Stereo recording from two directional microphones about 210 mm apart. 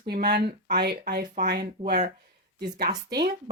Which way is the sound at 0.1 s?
50° right (ahead or behind).